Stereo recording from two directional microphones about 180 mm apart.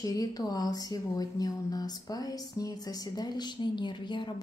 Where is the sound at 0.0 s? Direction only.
20° left (ahead or behind).